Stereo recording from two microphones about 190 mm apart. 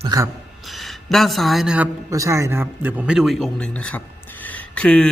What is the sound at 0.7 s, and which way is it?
Speech, centre (ahead or behind).